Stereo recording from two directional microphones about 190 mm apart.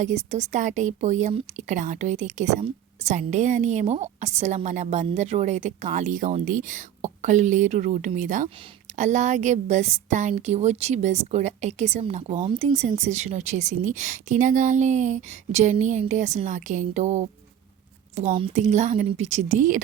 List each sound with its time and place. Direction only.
0.0 s a woman's voice: 35° right (ahead or behind)